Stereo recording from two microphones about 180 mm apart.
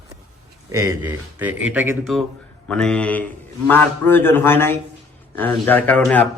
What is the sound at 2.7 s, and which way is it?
Speech, 5° left (ahead or behind).